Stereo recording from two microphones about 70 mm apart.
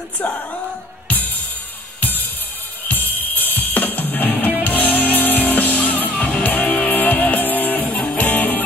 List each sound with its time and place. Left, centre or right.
1.0 s drum kit: left
2.0 s music: left